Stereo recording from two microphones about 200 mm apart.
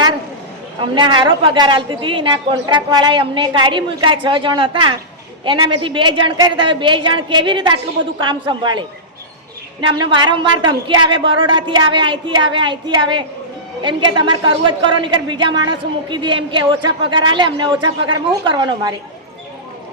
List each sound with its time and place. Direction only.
0.8 s a woman's voice: 25° right (ahead or behind)
9.8 s a woman's voice: 20° right (ahead or behind)